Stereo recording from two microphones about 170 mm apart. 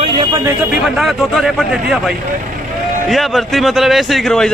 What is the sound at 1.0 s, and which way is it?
A man's voice, centre (ahead or behind).